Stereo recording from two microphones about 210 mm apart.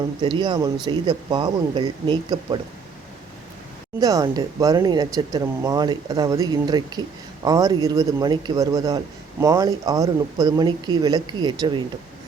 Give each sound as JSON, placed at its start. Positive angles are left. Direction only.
{"t": 0.2, "sound": "speech", "side_deg": -20}
{"t": 4.0, "sound": "speech", "side_deg": -15}